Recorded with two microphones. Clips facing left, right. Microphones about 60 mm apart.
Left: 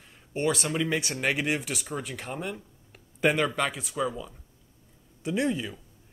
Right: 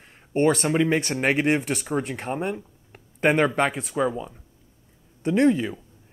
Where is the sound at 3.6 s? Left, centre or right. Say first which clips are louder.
Right 6 dB; right.